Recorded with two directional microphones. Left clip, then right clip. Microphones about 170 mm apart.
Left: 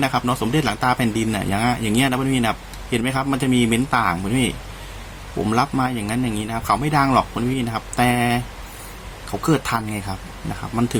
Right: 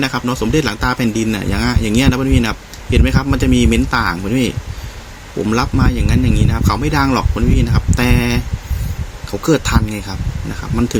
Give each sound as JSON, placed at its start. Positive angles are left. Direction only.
{"t": 0.0, "sound": "speech", "side_deg": -15}
{"t": 9.5, "sound": "speech", "side_deg": -20}